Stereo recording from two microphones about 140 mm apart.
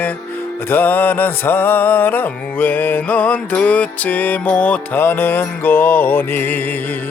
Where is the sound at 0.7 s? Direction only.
15° left (ahead or behind).